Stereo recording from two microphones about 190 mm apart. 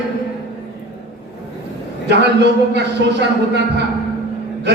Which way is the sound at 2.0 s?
65° right (ahead or behind).